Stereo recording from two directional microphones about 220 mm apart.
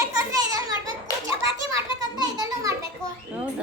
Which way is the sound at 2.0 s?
15° right (ahead or behind).